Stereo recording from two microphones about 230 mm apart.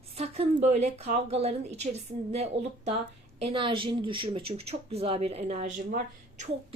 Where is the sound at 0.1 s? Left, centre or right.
Right.